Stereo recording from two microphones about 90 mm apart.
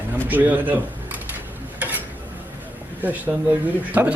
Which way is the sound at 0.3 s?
20° right (ahead or behind).